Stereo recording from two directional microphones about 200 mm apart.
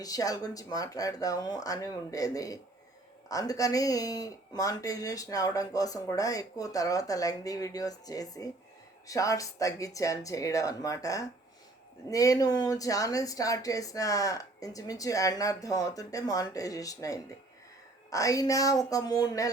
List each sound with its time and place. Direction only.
0.0 s speech: 20° left (ahead or behind)